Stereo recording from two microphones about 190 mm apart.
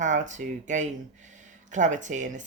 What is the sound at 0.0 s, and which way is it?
Speech, 40° right (ahead or behind).